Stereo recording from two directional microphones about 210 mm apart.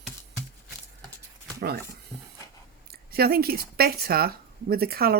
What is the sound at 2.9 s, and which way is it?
Speech, 45° right (ahead or behind).